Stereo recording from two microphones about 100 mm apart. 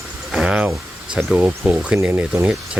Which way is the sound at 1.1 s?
5° right (ahead or behind).